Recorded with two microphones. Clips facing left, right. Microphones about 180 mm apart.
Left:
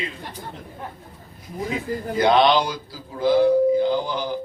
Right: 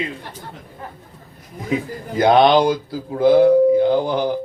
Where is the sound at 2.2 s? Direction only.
50° right (ahead or behind).